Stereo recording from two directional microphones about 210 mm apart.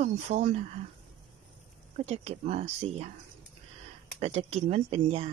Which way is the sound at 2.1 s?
30° right (ahead or behind).